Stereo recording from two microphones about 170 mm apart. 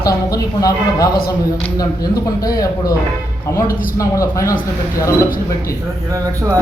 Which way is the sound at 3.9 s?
20° left (ahead or behind).